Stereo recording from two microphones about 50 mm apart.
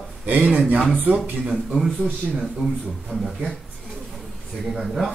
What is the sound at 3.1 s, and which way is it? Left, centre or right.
Speech, centre.